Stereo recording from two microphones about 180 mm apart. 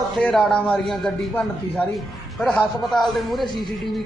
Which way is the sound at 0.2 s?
5° left (ahead or behind).